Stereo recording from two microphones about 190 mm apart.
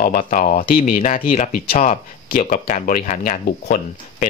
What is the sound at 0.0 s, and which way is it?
Speech, 45° left (ahead or behind).